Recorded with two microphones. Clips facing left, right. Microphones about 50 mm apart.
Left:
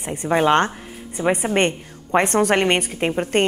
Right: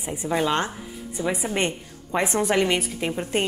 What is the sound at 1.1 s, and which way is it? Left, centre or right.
Speech, left.